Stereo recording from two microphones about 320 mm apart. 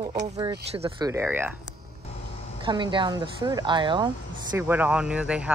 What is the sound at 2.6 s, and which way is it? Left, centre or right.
A woman's voice, centre.